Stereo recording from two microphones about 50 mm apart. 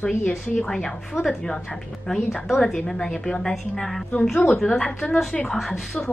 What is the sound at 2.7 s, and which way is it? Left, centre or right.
Speech, centre.